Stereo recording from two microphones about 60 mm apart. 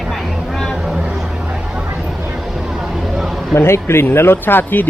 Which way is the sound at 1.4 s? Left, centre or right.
Centre.